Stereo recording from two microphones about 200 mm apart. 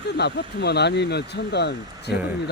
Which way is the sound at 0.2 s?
55° left (ahead or behind).